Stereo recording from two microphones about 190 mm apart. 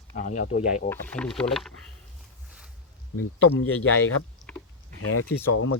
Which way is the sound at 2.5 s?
5° right (ahead or behind).